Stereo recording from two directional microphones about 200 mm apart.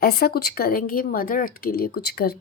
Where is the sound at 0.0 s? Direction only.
50° left (ahead or behind).